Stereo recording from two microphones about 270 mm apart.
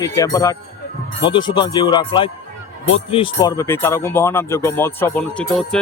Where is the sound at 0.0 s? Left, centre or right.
Centre.